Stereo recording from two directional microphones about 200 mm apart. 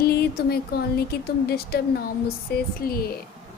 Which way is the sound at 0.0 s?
50° left (ahead or behind).